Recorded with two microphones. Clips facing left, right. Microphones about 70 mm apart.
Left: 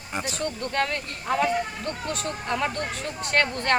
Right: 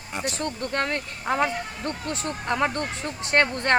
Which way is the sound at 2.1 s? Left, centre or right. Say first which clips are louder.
Right 4 dB; right.